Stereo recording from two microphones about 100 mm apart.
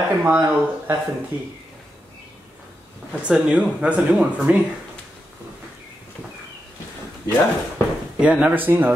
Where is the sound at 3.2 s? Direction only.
10° right (ahead or behind).